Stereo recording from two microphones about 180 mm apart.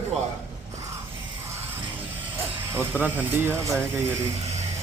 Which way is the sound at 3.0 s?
10° right (ahead or behind).